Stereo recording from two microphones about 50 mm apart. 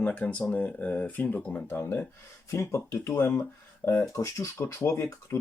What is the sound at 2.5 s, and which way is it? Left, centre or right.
Speech, left.